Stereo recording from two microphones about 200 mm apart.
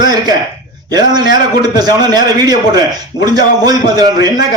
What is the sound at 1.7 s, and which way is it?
A man's voice, 20° right (ahead or behind).